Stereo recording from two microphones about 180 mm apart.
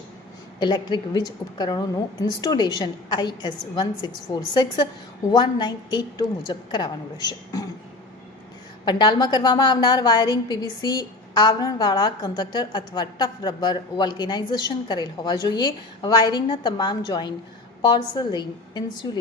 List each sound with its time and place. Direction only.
0.6 s a woman's voice: 25° left (ahead or behind)
8.8 s a woman's voice: 25° left (ahead or behind)